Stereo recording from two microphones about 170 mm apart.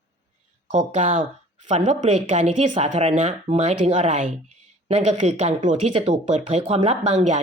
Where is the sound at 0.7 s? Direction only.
45° right (ahead or behind).